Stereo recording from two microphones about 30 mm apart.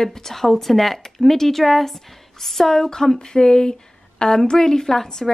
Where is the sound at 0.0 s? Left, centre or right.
Centre.